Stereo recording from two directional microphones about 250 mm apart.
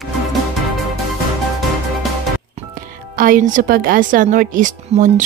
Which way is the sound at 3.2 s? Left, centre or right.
Right.